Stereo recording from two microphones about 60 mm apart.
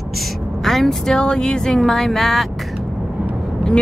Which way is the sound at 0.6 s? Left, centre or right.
Centre.